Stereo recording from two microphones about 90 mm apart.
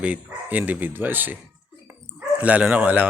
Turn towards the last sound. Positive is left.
turn(degrees=-15)  # may be behind; listen again after turning